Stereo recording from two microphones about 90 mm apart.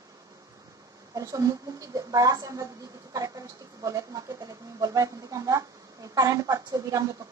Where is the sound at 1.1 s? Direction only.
40° right (ahead or behind).